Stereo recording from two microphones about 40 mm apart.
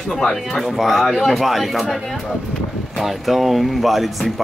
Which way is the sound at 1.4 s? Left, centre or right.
Centre.